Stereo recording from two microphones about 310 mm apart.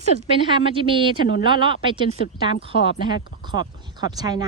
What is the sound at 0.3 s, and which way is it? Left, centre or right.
Speech, centre.